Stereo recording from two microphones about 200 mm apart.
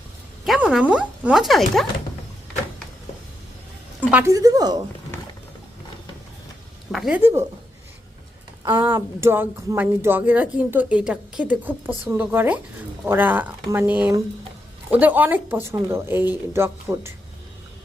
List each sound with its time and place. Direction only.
0.4 s speech: centre (ahead or behind)
4.1 s speech: 15° right (ahead or behind)
6.9 s a woman's voice: centre (ahead or behind)
8.6 s speech: 15° right (ahead or behind)